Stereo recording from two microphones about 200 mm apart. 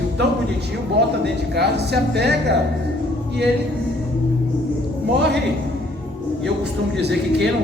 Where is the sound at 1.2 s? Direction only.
55° right (ahead or behind).